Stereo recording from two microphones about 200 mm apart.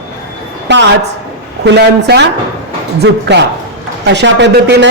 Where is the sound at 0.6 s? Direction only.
60° right (ahead or behind).